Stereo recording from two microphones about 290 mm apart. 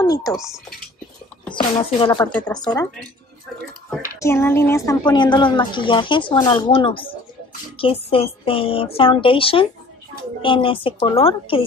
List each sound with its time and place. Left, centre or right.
0.0 s speech: centre
0.4 s speech: centre
1.5 s a woman's voice: centre
4.2 s a woman's voice: centre